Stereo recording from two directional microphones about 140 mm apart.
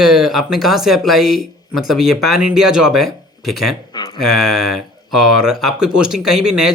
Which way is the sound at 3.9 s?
40° left (ahead or behind).